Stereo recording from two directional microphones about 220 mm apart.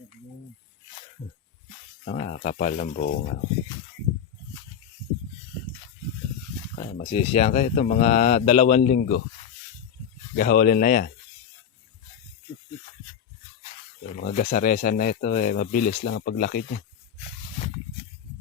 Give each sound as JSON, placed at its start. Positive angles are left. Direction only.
{"t": 2.0, "sound": "speech", "side_deg": 30}
{"t": 6.7, "sound": "a sound", "side_deg": 40}
{"t": 7.1, "sound": "speech", "side_deg": 30}
{"t": 10.3, "sound": "speech", "side_deg": 40}
{"t": 14.1, "sound": "speech", "side_deg": 35}